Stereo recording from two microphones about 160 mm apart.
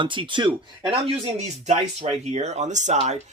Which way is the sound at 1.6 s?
45° right (ahead or behind).